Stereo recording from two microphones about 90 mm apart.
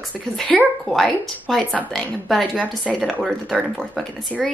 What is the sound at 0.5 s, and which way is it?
A woman's voice, 5° left (ahead or behind).